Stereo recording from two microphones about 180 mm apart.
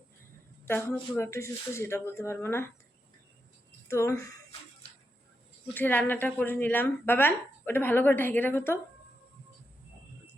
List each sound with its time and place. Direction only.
0.6 s speech: 10° left (ahead or behind)
3.8 s speech: 15° left (ahead or behind)
5.7 s speech: 10° left (ahead or behind)